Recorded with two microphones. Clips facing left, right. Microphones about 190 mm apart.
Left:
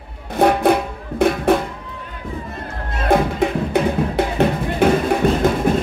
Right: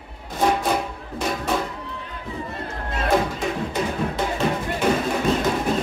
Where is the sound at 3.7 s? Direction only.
60° left (ahead or behind).